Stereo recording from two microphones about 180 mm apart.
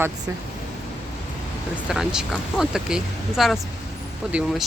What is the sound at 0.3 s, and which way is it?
Speech, 15° right (ahead or behind).